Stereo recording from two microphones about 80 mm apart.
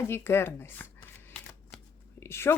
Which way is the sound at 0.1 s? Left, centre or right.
Left.